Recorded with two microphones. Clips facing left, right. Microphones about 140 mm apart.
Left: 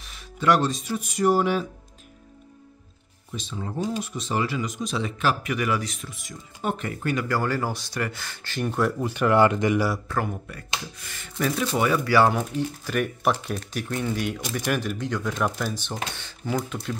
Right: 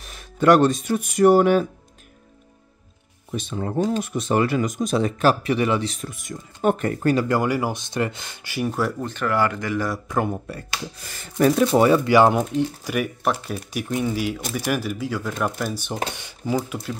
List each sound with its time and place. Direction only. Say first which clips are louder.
0.0 s speech: right 6 dB; 50° right (ahead or behind)
3.3 s speech: right 7 dB; 55° right (ahead or behind); by 5.9 s 30° right (ahead or behind)
5.9 s speech: right 6 dB; 50° right (ahead or behind)
7.2 s speech: right 4 dB; 15° right (ahead or behind)
9.0 s speech: left 5 dB; 10° left (ahead or behind)
10.0 s speech: right 4 dB; 20° right (ahead or behind)
10.3 s speech: right 3 dB; 35° right (ahead or behind)
11.9 s speech: right 4 dB; 20° right (ahead or behind); by 16.9 s 5° right (ahead or behind)